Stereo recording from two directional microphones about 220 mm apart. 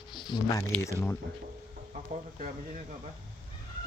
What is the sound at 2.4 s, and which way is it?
Speech, 30° right (ahead or behind).